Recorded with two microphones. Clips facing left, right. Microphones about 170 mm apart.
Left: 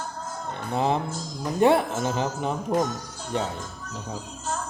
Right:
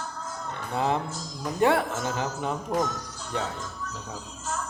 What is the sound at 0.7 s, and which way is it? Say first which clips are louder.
A woman's voice: left 2 dB; 25° left (ahead or behind).